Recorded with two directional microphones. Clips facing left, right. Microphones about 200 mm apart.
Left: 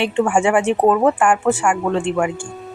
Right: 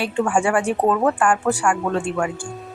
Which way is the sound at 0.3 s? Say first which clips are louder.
Left 3 dB; 25° left (ahead or behind).